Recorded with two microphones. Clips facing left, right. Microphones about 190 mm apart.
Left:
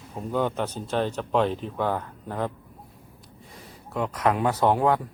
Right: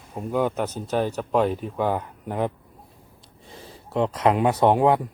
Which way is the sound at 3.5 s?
30° right (ahead or behind).